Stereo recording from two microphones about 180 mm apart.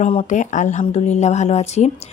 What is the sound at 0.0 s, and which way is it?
A woman's voice, 35° left (ahead or behind).